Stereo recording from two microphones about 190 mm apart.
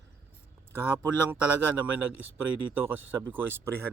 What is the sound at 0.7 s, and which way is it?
Speech, 10° right (ahead or behind).